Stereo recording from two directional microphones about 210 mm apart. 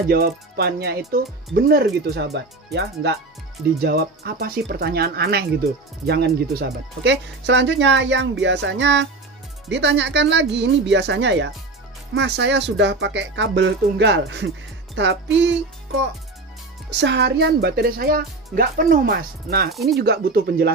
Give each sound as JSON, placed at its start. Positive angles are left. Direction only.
{"t": 0.1, "sound": "speech", "side_deg": -50}
{"t": 16.9, "sound": "speech", "side_deg": -55}